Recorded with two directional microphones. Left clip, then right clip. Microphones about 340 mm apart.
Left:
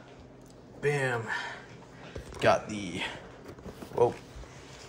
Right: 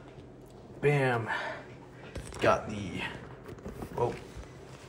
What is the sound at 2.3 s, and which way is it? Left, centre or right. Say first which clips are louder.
Speech: left 2 dB; centre.